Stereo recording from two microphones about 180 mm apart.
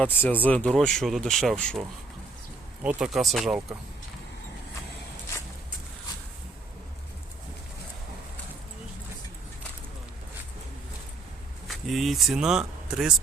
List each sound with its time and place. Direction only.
0.0 s speech: 10° left (ahead or behind)
11.7 s speech: centre (ahead or behind)